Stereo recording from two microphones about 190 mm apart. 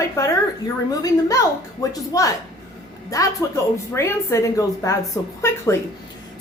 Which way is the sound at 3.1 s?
15° left (ahead or behind).